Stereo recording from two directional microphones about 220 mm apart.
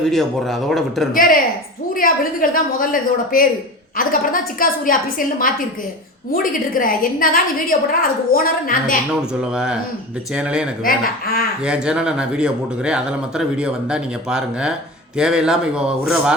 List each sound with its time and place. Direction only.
0.0 s speech: centre (ahead or behind)
1.1 s a woman's voice: 40° left (ahead or behind)
6.3 s a woman's voice: 40° left (ahead or behind)
9.4 s speech: 5° right (ahead or behind)
10.8 s speech: 45° left (ahead or behind)
11.6 s speech: 5° right (ahead or behind)